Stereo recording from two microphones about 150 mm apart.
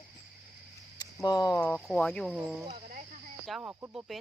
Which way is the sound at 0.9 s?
25° left (ahead or behind).